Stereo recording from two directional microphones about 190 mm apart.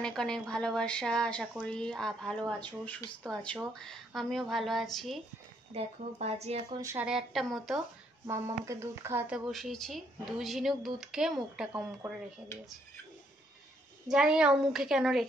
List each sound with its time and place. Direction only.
0.0 s speech: 5° left (ahead or behind)
5.7 s speech: 30° right (ahead or behind)
6.7 s speech: 15° right (ahead or behind)
7.1 s speech: centre (ahead or behind)
8.6 s speech: 15° right (ahead or behind)
9.5 s speech: centre (ahead or behind)
14.0 s speech: 5° right (ahead or behind)